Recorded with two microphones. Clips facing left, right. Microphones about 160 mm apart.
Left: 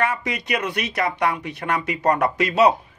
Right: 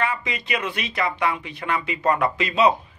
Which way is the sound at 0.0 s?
45° left (ahead or behind).